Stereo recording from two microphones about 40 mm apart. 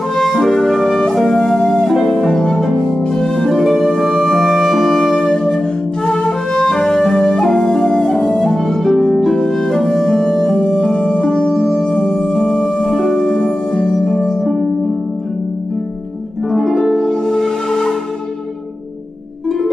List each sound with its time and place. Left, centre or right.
0.1 s music: centre
8.0 s harp: centre
9.0 s music: centre
14.4 s music: centre
16.5 s music: centre
16.9 s music: centre